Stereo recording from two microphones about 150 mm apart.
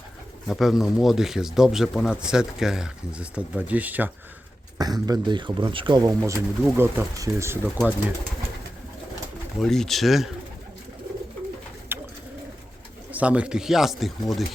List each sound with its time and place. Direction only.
0.4 s speech: centre (ahead or behind)
4.8 s speech: 25° right (ahead or behind)
9.6 s speech: 5° left (ahead or behind)
11.9 s bird: 15° right (ahead or behind)
13.1 s speech: 10° right (ahead or behind)